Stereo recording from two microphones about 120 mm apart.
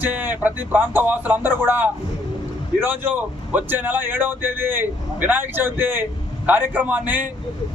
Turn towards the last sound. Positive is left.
turn(degrees=-15)  # may be behind; listen again after turning